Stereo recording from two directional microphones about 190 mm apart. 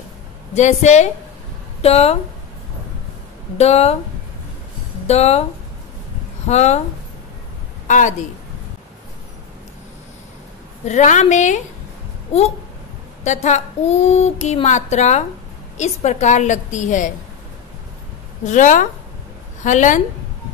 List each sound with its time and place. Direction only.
0.6 s a woman's voice: 35° left (ahead or behind)
3.5 s a woman's voice: 35° left (ahead or behind)
5.0 s speech: 35° left (ahead or behind)
6.4 s a woman's voice: 35° left (ahead or behind)
7.9 s a woman's voice: 40° left (ahead or behind)
10.9 s a woman's voice: 40° left (ahead or behind)
18.4 s a woman's voice: 40° left (ahead or behind)